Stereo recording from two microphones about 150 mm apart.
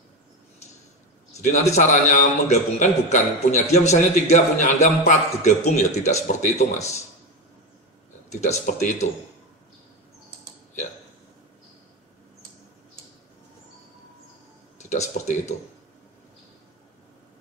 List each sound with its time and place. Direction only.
1.4 s a man's voice: 50° left (ahead or behind)
8.3 s a man's voice: 50° left (ahead or behind)
14.8 s speech: 50° left (ahead or behind)